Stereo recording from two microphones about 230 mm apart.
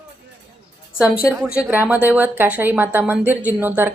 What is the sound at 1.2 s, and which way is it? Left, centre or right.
A woman's voice, centre.